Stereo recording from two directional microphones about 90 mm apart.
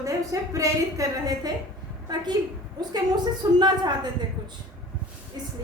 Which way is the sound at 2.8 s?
50° right (ahead or behind).